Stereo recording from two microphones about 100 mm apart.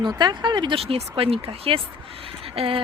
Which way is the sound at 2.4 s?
65° right (ahead or behind).